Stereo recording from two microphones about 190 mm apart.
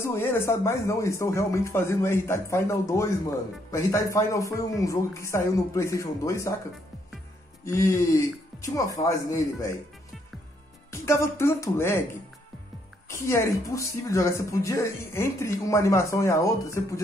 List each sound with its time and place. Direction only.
0.0 s speech: 10° left (ahead or behind)
7.6 s speech: 15° left (ahead or behind)
10.9 s speech: 15° left (ahead or behind)